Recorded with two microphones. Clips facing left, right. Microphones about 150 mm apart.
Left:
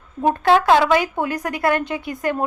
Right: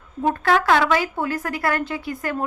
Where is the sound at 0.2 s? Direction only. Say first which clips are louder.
Left 3 dB; 25° left (ahead or behind).